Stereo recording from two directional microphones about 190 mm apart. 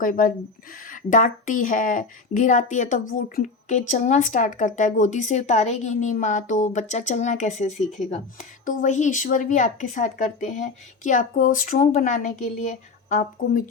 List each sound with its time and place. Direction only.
0.0 s speech: 45° left (ahead or behind)